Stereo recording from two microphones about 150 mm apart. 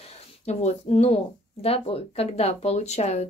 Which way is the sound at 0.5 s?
45° left (ahead or behind).